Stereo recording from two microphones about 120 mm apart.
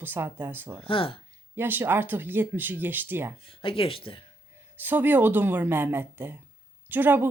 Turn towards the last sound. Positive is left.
turn(degrees=-15)  # may be behind; listen again after turning